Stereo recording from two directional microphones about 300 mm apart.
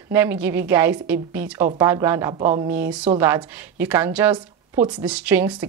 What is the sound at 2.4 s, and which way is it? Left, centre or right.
Speech, right.